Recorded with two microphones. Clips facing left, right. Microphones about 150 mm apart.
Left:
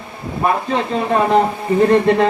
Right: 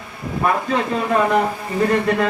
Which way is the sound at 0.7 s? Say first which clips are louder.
Left 2 dB; 30° left (ahead or behind).